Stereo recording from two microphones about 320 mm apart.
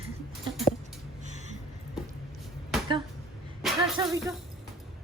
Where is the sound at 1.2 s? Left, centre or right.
Right.